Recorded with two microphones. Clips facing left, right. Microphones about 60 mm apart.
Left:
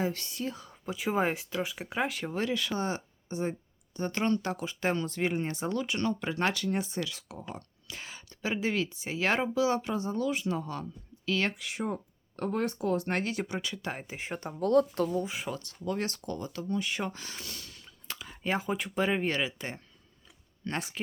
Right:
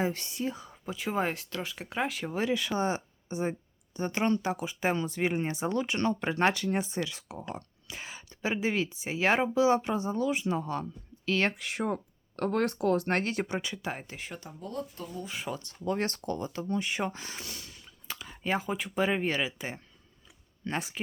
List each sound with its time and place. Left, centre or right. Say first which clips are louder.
0.0 s speech: right 1 dB; right
0.9 s speech: left 2 dB; centre
2.4 s speech: right 3 dB; right
7.5 s a sound: right 2 dB; centre
8.6 s speech: right 1 dB; right
11.3 s speech: right 2 dB; right
12.4 s speech: right 3 dB; right
14.0 s speech: left 2 dB; centre
14.3 s speech: left 6 dB; left
14.6 s speech: left 14 dB; left
15.5 s speech: right 6 dB; right; by 21.0 s centre